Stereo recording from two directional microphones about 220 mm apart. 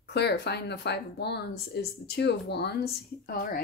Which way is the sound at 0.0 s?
50° left (ahead or behind).